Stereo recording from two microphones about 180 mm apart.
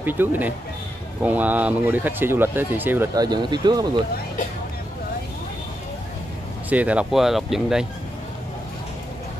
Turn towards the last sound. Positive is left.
turn(degrees=0)  # may be behind; listen again after turning